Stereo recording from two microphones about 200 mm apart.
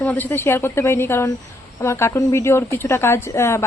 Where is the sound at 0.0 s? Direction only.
10° left (ahead or behind).